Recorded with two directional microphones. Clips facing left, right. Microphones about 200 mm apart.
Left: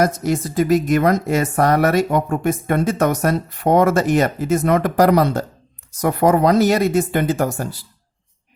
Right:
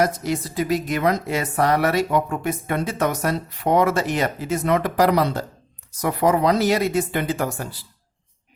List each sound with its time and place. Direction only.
0.0 s speech: 45° left (ahead or behind)